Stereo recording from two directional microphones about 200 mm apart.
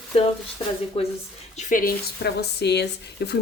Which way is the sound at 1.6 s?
40° left (ahead or behind).